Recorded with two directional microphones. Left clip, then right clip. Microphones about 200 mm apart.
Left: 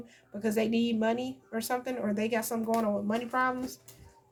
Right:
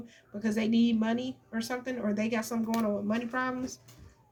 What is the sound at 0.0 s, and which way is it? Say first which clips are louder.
A woman's voice: left 2 dB; 35° left (ahead or behind).